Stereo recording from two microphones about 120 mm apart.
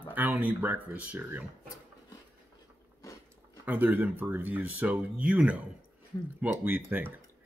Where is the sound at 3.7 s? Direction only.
15° right (ahead or behind).